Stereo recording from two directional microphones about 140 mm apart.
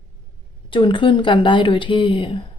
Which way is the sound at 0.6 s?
40° left (ahead or behind).